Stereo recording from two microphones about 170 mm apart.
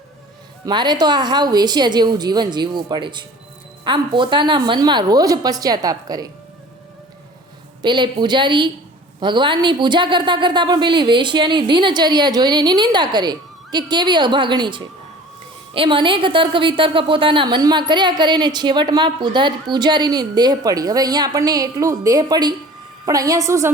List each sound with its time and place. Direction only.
0.6 s a woman's voice: 25° right (ahead or behind)
7.8 s a woman's voice: 25° right (ahead or behind)